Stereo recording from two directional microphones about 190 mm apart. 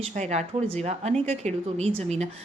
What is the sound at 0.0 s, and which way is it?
A woman's voice, 35° right (ahead or behind).